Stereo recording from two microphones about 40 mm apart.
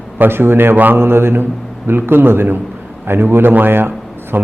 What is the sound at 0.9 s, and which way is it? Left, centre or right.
Mantra, right.